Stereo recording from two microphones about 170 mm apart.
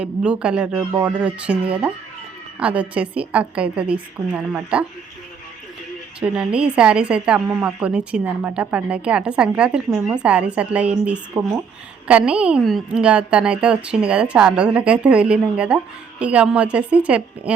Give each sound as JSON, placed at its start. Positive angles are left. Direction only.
{"t": 0.0, "sound": "speech", "side_deg": -5}
{"t": 2.6, "sound": "speech", "side_deg": -5}
{"t": 6.1, "sound": "speech", "side_deg": -5}